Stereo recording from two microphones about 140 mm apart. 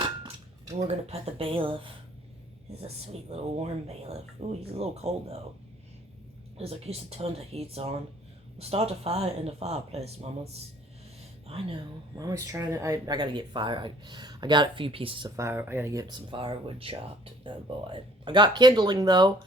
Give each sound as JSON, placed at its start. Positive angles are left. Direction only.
{"t": 0.9, "sound": "speech", "side_deg": -45}
{"t": 2.8, "sound": "speech", "side_deg": -50}
{"t": 6.6, "sound": "speech", "side_deg": -45}
{"t": 12.1, "sound": "speech", "side_deg": -25}
{"t": 15.4, "sound": "speech", "side_deg": -15}